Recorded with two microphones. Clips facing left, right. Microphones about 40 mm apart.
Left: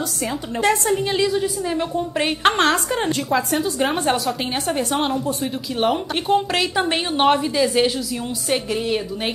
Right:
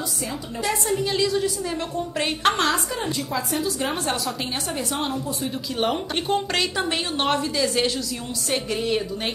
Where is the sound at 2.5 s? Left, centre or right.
Left.